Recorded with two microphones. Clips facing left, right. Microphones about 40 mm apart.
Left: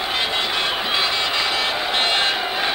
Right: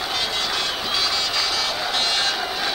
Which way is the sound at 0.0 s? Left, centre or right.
Left.